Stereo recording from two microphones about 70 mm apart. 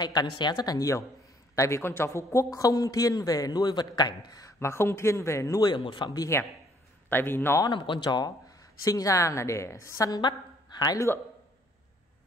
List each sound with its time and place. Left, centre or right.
0.0 s speech: left
0.7 s a man's voice: left
4.6 s speech: left
5.6 s a man's voice: left
7.1 s speech: left
7.6 s speech: left
10.2 s a woman's voice: left